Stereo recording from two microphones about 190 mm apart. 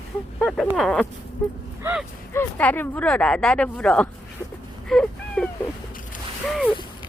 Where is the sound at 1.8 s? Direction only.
10° right (ahead or behind).